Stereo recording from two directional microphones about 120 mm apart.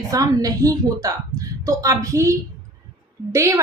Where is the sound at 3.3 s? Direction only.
25° right (ahead or behind).